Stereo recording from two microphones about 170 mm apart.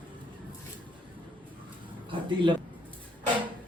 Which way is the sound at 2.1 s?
30° right (ahead or behind).